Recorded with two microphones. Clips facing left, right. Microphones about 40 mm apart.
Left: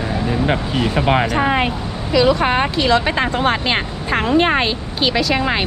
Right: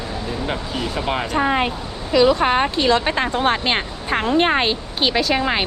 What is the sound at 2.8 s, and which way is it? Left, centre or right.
Speech, left.